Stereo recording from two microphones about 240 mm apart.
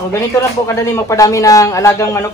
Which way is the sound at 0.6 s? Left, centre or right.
Centre.